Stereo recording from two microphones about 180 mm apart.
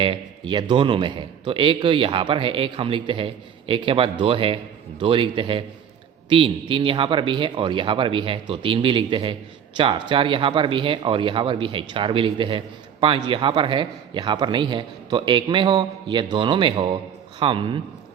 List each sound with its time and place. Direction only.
0.0 s speech: 25° right (ahead or behind)